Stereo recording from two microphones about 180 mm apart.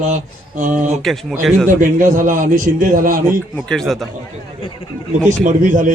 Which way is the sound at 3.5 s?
5° left (ahead or behind).